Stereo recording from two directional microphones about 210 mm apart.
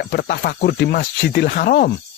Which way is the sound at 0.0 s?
45° left (ahead or behind).